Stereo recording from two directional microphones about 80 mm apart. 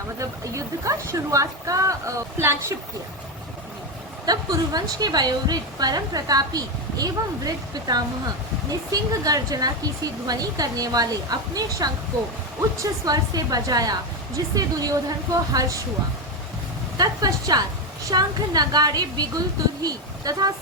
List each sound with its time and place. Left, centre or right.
0.2 s a woman's voice: right
4.3 s a woman's voice: right
17.0 s a woman's voice: right